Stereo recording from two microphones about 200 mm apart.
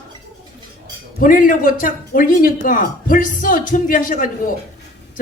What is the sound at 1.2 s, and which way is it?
Speech, 45° left (ahead or behind).